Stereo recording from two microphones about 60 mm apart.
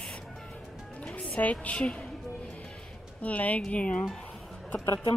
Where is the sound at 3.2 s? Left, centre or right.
Left.